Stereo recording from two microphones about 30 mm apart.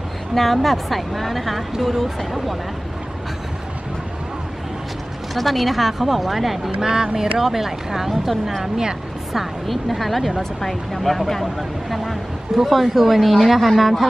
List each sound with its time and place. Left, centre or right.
0.3 s speech: centre
5.3 s speech: centre
6.8 s speech: right
7.2 s speech: centre
9.7 s speech: centre
12.7 s speech: centre